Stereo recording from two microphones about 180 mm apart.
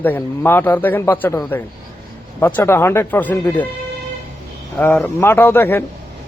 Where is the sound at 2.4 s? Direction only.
15° left (ahead or behind).